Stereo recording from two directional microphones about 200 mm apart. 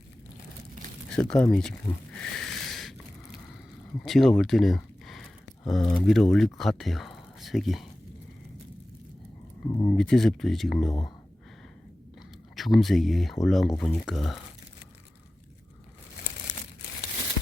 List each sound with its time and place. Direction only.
1.1 s speech: 5° left (ahead or behind)
2.1 s a sound: 5° left (ahead or behind)
4.0 s a sound: centre (ahead or behind)
6.1 s speech: centre (ahead or behind)
9.6 s speech: 20° left (ahead or behind)
9.9 s speech: 5° left (ahead or behind)
12.5 s speech: centre (ahead or behind)